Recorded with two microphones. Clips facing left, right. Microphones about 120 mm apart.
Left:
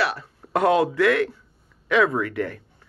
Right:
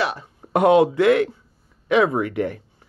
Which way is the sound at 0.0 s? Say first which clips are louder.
Even; 20° right (ahead or behind).